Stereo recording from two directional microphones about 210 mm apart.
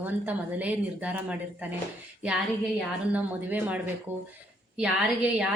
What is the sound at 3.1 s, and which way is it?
A woman's voice, 5° right (ahead or behind).